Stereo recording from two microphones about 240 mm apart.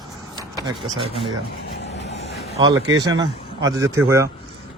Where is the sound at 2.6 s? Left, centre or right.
Centre.